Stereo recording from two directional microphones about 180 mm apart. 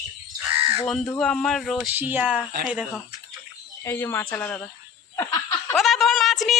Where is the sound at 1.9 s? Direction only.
10° right (ahead or behind).